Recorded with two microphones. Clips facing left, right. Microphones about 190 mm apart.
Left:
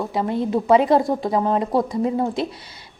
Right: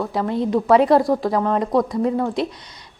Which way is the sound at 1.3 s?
30° left (ahead or behind).